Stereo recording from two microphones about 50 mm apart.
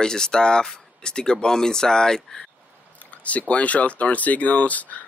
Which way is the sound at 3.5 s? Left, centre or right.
Left.